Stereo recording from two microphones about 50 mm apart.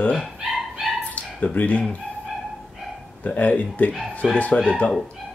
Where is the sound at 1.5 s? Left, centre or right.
Left.